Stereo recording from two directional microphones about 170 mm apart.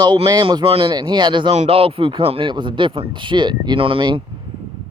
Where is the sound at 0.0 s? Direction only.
25° right (ahead or behind).